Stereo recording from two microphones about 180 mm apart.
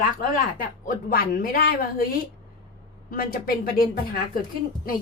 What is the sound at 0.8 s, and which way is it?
A woman's voice, 55° left (ahead or behind).